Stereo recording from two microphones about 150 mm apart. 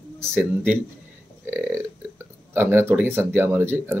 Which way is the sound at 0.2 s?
15° right (ahead or behind).